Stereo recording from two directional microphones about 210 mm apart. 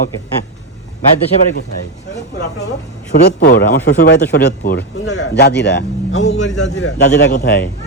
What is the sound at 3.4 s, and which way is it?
A man's voice, 45° left (ahead or behind).